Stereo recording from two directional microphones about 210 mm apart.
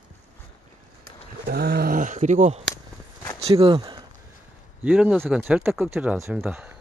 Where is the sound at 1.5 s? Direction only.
50° right (ahead or behind); by 4.0 s 25° right (ahead or behind).